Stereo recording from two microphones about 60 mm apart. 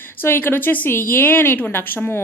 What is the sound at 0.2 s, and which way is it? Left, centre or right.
A woman's voice, left.